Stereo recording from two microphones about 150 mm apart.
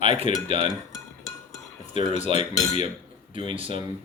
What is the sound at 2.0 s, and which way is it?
Cutlery, 50° left (ahead or behind).